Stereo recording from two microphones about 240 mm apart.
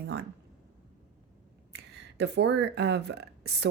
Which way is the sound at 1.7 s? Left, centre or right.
Right.